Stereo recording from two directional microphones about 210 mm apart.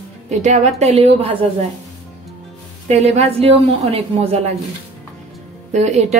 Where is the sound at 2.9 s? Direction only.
30° right (ahead or behind).